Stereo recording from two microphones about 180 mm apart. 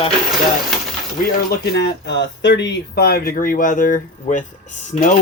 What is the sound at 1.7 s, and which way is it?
Speech, 70° left (ahead or behind).